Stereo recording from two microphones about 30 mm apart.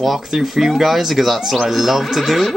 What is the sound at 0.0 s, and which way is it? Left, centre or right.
Speech, centre.